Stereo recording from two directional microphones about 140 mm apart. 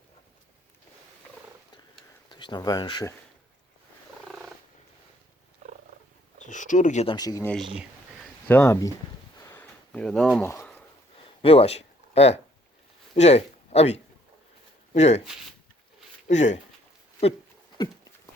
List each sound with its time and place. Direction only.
2.3 s speech: 30° left (ahead or behind)
4.3 s purr: centre (ahead or behind)
5.6 s purr: 60° right (ahead or behind)
6.4 s a sound: 60° left (ahead or behind)
7.1 s speech: 25° left (ahead or behind)
7.6 s speech: 5° right (ahead or behind)
8.4 s speech: 15° left (ahead or behind)
9.4 s a sound: 15° left (ahead or behind)
10.4 s speech: 20° left (ahead or behind)
11.4 s speech: 45° left (ahead or behind)
16.2 s speech: 55° left (ahead or behind)